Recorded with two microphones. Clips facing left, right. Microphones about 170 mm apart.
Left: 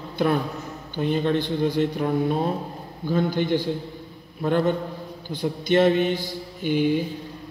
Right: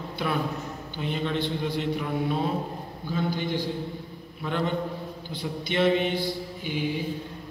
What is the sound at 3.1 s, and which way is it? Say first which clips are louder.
A man's voice: left 6 dB; 50° left (ahead or behind).